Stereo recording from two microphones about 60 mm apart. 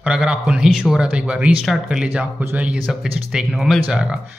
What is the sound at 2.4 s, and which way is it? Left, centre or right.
Speech, right.